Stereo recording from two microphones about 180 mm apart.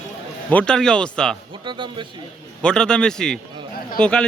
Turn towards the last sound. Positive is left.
turn(degrees=5)  # may be behind; listen again after turning